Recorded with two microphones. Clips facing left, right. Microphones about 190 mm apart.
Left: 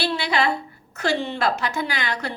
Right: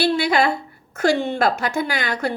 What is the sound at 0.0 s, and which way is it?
A woman's voice, 50° right (ahead or behind).